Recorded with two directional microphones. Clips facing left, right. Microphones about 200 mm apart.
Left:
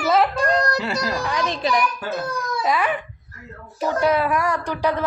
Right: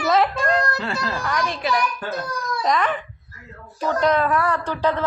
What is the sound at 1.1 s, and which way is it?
Speech, 15° left (ahead or behind).